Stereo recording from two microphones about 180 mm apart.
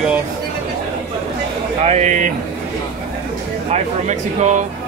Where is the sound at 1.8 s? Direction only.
40° right (ahead or behind).